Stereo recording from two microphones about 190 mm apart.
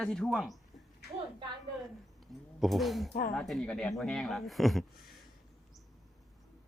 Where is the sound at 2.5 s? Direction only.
Centre (ahead or behind).